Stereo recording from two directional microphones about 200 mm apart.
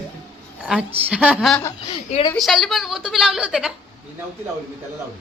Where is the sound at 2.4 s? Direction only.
Centre (ahead or behind).